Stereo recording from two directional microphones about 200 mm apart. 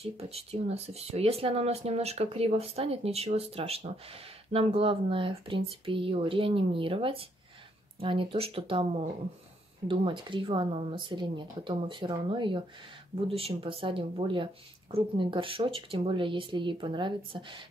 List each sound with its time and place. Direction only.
0.0 s speech: 30° right (ahead or behind)